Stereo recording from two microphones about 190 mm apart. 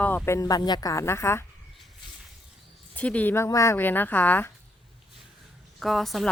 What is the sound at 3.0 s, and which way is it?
Speech, 5° left (ahead or behind).